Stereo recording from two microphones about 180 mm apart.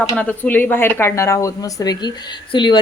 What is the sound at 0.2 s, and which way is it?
Speech, 10° left (ahead or behind).